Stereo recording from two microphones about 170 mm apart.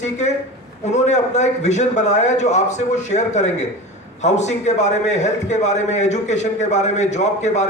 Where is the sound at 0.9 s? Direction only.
40° left (ahead or behind).